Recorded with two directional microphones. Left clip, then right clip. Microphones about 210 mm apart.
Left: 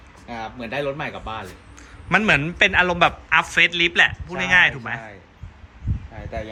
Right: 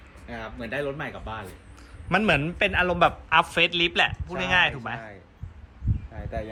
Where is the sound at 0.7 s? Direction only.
35° left (ahead or behind).